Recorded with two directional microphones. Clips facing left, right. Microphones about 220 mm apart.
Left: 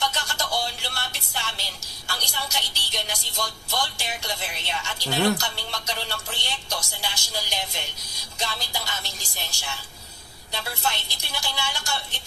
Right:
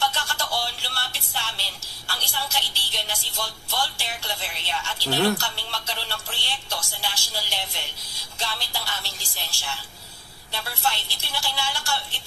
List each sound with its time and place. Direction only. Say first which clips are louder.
0.0 s a sound: right 1 dB; 20° left (ahead or behind)
2.0 s music: even; 20° left (ahead or behind)
3.7 s a woman's voice: even; 20° left (ahead or behind)